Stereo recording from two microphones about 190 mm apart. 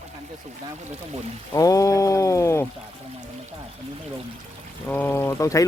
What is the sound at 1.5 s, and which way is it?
Speech, 15° left (ahead or behind).